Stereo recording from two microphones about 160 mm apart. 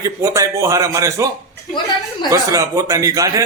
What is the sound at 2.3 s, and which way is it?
A man's voice, 20° right (ahead or behind).